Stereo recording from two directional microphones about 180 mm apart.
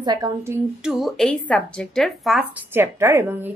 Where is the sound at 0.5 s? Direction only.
5° right (ahead or behind).